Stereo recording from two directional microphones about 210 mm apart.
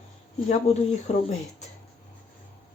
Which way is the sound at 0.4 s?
30° left (ahead or behind).